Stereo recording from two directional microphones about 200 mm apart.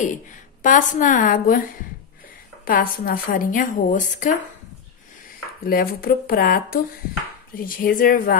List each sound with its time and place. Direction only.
0.6 s a woman's voice: 40° left (ahead or behind)
5.6 s speech: 45° left (ahead or behind)